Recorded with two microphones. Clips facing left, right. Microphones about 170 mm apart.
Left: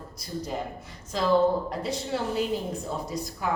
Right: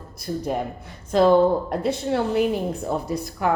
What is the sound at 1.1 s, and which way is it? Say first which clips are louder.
A woman's voice: right 6 dB; 55° right (ahead or behind).